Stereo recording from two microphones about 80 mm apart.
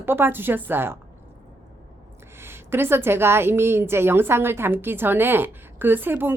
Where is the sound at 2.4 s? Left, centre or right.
Right.